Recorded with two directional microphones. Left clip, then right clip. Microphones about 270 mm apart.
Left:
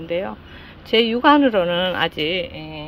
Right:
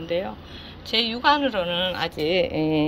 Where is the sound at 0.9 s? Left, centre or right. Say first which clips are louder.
Left 5 dB; left.